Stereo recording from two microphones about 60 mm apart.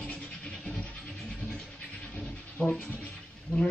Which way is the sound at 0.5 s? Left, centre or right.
Centre.